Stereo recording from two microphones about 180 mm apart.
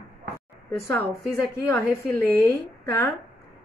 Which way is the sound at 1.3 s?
15° left (ahead or behind).